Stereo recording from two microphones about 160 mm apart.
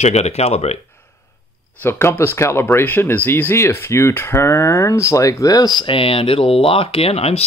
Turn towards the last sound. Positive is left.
turn(degrees=40)  # may be behind; listen again after turning